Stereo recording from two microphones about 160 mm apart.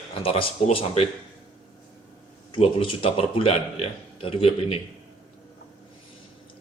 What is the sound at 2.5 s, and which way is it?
A man's voice, 35° left (ahead or behind).